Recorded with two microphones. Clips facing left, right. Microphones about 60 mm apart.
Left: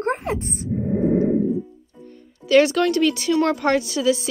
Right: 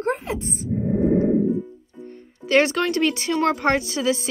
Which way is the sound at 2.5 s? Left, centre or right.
Right.